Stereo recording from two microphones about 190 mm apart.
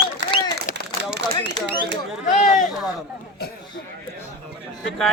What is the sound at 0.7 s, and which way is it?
Speech, 65° right (ahead or behind).